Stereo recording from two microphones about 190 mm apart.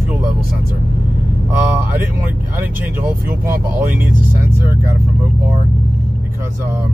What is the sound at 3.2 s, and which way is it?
Speech, 50° right (ahead or behind).